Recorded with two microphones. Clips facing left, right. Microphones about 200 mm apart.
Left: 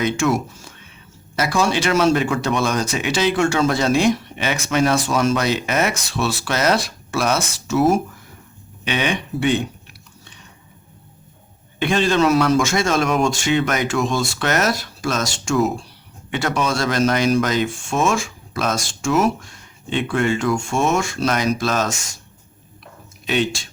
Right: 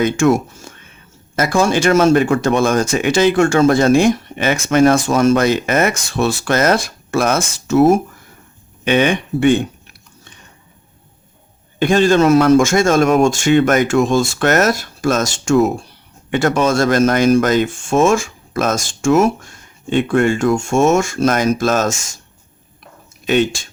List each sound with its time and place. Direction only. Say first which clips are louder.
0.0 s speech: right 6 dB; 50° right (ahead or behind)
11.8 s speech: right 5 dB; 45° right (ahead or behind)
23.2 s speech: right 6 dB; 50° right (ahead or behind)